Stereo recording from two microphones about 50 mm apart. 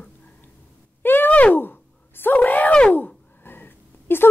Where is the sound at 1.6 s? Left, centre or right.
Left.